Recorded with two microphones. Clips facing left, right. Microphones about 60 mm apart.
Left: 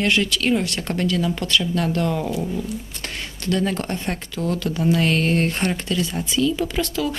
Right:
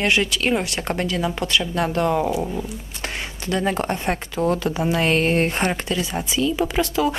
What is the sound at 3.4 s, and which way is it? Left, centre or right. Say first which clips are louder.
Speech: right 1 dB; centre.